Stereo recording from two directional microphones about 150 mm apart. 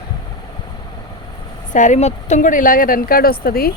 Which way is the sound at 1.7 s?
55° left (ahead or behind).